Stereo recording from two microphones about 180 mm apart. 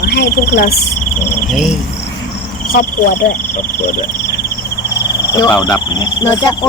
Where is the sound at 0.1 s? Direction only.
60° left (ahead or behind).